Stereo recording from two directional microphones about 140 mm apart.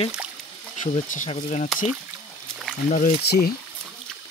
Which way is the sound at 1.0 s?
60° left (ahead or behind).